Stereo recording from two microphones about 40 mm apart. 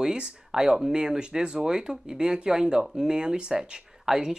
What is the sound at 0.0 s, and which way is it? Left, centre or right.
Speech, centre.